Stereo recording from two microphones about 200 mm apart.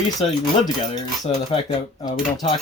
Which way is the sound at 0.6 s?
20° left (ahead or behind).